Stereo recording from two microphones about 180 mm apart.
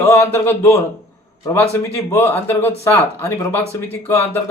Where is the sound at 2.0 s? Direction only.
15° left (ahead or behind).